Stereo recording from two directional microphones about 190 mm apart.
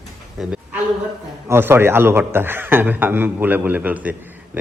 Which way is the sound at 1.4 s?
15° right (ahead or behind).